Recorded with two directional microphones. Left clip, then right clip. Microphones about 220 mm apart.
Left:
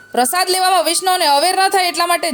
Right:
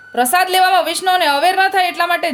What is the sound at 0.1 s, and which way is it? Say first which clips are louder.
A woman's voice: right 2 dB; 30° left (ahead or behind).